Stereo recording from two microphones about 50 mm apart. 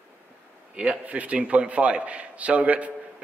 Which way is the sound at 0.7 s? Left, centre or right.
Right.